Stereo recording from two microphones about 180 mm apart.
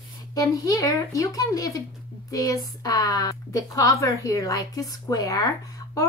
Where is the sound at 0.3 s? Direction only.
20° left (ahead or behind).